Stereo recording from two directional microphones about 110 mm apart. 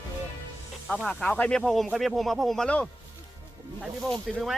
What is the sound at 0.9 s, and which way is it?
Speech, 10° left (ahead or behind).